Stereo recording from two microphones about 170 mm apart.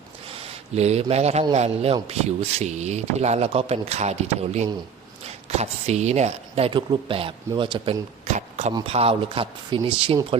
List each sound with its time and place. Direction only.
0.8 s speech: 40° right (ahead or behind)
8.3 s a sound: 45° right (ahead or behind)
8.9 s speech: 35° right (ahead or behind)